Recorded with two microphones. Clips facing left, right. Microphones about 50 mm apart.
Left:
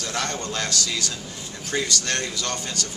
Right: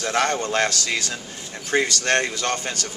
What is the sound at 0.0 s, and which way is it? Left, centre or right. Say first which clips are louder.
Speech: right 6 dB; right.